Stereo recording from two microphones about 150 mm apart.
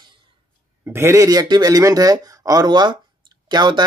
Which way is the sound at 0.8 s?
15° right (ahead or behind).